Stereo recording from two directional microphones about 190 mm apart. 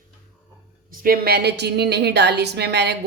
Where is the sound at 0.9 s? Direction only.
50° right (ahead or behind).